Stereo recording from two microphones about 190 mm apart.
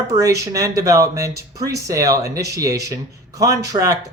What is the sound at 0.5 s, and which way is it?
Speech, 15° right (ahead or behind).